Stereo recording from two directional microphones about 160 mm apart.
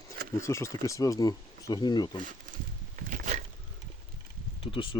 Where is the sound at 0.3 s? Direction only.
20° left (ahead or behind).